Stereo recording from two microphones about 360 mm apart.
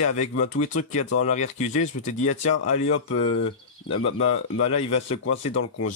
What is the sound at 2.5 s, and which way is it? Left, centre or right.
Speech, left.